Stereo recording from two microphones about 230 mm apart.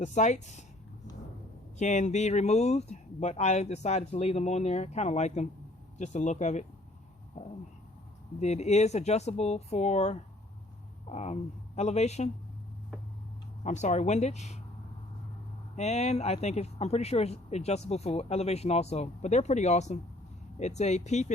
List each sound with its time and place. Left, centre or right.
0.0 s speech: left
1.8 s speech: left
13.7 s speech: left
15.7 s speech: left